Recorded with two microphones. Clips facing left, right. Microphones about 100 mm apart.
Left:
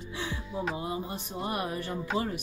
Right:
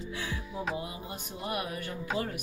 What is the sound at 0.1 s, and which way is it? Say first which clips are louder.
Music: left 3 dB; 25° left (ahead or behind).